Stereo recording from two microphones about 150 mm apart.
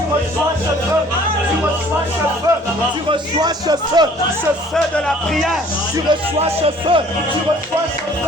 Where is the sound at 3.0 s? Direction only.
25° right (ahead or behind).